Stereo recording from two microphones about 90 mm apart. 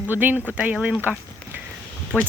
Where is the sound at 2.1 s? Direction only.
20° right (ahead or behind).